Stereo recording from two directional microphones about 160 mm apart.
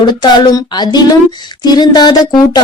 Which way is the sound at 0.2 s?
25° left (ahead or behind).